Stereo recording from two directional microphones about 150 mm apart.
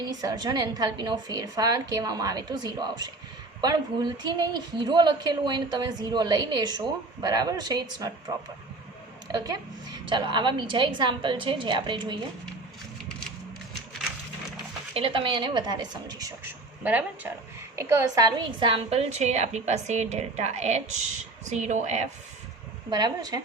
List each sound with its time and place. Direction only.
0.0 s a woman's voice: 25° right (ahead or behind)
9.3 s a woman's voice: 25° right (ahead or behind)
14.9 s a woman's voice: 35° right (ahead or behind)
16.8 s a woman's voice: 10° right (ahead or behind); by 22.1 s 50° right (ahead or behind)
22.9 s a woman's voice: 25° right (ahead or behind)